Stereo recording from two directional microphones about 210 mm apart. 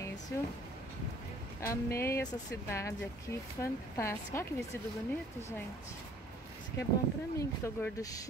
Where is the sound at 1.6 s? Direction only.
15° left (ahead or behind).